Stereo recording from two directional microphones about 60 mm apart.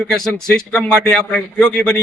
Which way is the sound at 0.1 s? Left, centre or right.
Centre.